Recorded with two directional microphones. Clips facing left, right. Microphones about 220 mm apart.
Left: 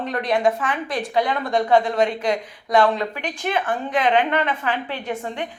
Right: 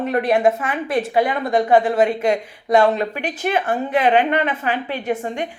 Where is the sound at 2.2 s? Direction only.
25° right (ahead or behind).